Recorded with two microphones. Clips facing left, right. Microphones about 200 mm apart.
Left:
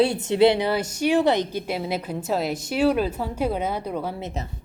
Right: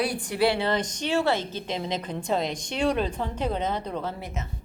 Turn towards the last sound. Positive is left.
turn(degrees=10)  # may be behind; listen again after turning